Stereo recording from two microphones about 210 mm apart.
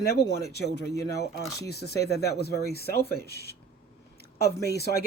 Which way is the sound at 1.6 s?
55° left (ahead or behind).